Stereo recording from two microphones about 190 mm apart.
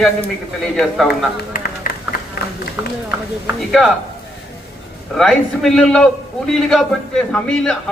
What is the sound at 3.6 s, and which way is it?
Speech, centre (ahead or behind).